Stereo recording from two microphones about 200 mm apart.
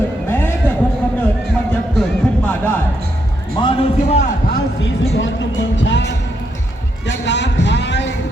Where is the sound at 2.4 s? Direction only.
10° left (ahead or behind).